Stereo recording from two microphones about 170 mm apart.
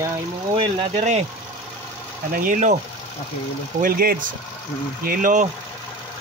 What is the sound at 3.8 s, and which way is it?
Speech, 60° right (ahead or behind).